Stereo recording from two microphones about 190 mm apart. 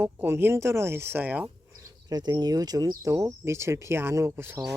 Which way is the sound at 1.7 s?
20° right (ahead or behind).